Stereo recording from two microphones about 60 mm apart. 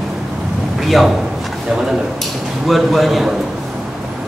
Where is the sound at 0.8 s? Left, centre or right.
Centre.